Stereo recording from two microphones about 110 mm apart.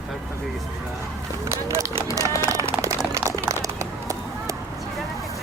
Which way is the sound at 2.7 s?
25° right (ahead or behind).